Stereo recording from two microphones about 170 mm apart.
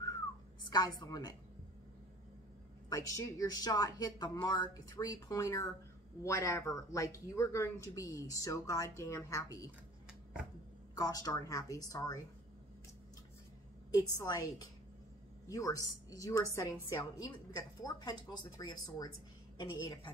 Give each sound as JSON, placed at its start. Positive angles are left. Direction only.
{"t": 0.7, "sound": "a woman's voice", "side_deg": 25}
{"t": 2.9, "sound": "a woman's voice", "side_deg": 20}
{"t": 11.0, "sound": "a woman's voice", "side_deg": 20}
{"t": 14.1, "sound": "a woman's voice", "side_deg": 20}